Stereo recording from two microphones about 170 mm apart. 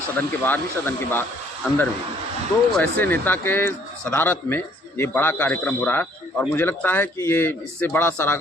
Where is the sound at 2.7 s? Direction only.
10° left (ahead or behind).